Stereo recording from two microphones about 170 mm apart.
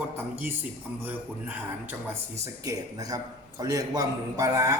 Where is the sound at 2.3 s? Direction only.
15° right (ahead or behind).